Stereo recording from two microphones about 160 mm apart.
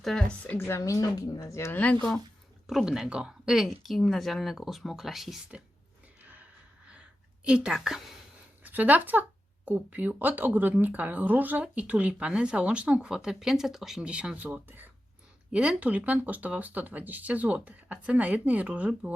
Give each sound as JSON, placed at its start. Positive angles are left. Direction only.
{"t": 0.0, "sound": "a woman's voice", "side_deg": 5}
{"t": 2.6, "sound": "a woman's voice", "side_deg": -5}
{"t": 6.2, "sound": "a sound", "side_deg": -10}
{"t": 7.4, "sound": "a woman's voice", "side_deg": -5}